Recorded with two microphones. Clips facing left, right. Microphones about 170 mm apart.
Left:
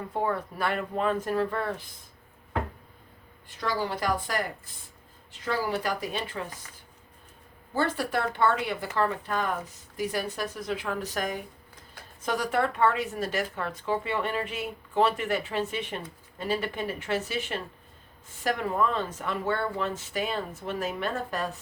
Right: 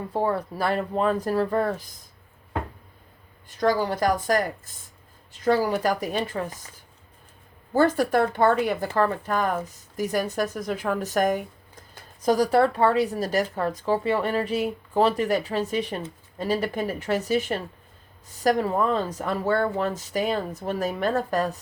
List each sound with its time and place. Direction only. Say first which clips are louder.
0.1 s a woman's voice: right 4 dB; 35° right (ahead or behind)
3.6 s speech: right 7 dB; 45° right (ahead or behind)
7.7 s speech: right 8 dB; 45° right (ahead or behind)
12.2 s a woman's voice: right 8 dB; 35° right (ahead or behind)